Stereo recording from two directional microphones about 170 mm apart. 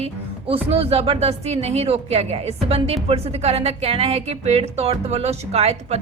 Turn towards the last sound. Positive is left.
turn(degrees=-40)  # may be behind; listen again after turning